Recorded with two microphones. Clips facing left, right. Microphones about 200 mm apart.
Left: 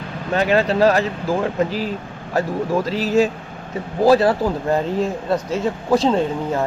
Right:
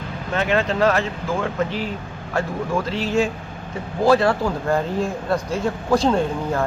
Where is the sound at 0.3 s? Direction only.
35° left (ahead or behind).